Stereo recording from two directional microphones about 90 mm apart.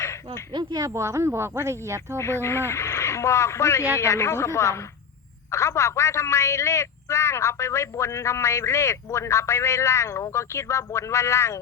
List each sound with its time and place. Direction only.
0.5 s speech: 45° right (ahead or behind)
2.1 s speech: 30° left (ahead or behind)